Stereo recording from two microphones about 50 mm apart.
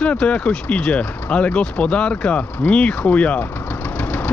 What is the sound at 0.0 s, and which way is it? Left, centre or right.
Speech, left.